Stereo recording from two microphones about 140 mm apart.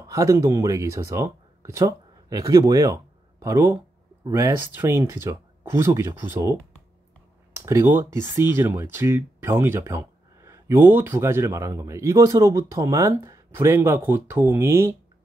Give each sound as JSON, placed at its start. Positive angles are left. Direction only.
{"t": 0.0, "sound": "speech", "side_deg": -20}